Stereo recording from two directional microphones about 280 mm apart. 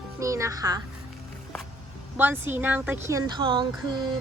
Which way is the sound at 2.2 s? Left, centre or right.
Centre.